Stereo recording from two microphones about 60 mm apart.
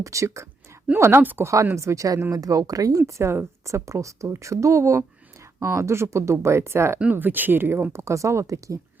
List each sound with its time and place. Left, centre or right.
0.0 s speech: right
1.2 s speech: right
1.6 s speech: right
2.3 s speech: right
3.1 s speech: right
7.1 s speech: right